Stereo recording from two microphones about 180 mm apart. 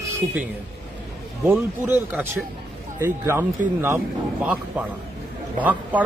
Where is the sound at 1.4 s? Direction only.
15° right (ahead or behind).